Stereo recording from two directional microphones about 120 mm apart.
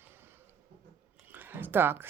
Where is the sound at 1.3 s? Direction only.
15° right (ahead or behind).